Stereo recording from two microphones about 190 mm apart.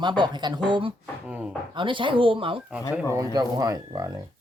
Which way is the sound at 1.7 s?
25° right (ahead or behind).